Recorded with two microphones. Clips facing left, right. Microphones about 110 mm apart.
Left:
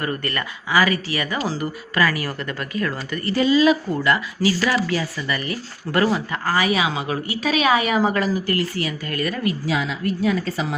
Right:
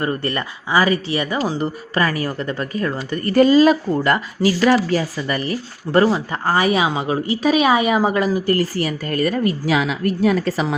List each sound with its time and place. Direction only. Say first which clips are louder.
0.0 s speech: right 4 dB; 25° right (ahead or behind)
3.2 s speech: right 4 dB; 50° right (ahead or behind); by 6.6 s 25° right (ahead or behind)
6.6 s speech: right 3 dB; 45° right (ahead or behind)
6.9 s a woman's voice: right 5 dB; 25° right (ahead or behind)
8.4 s speech: right 4 dB; 40° right (ahead or behind)
9.6 s a woman's voice: right 4 dB; 70° right (ahead or behind)